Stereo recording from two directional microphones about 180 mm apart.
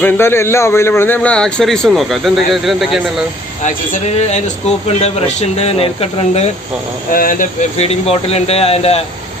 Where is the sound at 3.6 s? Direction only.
40° left (ahead or behind).